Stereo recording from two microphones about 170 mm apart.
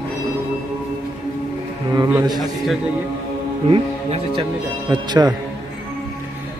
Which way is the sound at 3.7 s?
30° right (ahead or behind).